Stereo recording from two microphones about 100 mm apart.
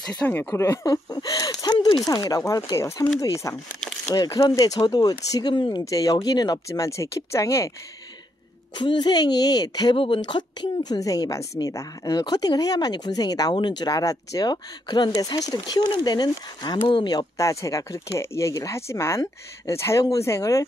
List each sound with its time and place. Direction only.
0.1 s speech: 15° left (ahead or behind)
1.1 s a woman's voice: 40° left (ahead or behind)
5.9 s a woman's voice: 35° left (ahead or behind)
8.7 s a woman's voice: 50° left (ahead or behind)
9.9 s a woman's voice: 60° left (ahead or behind)
17.4 s speech: 30° left (ahead or behind)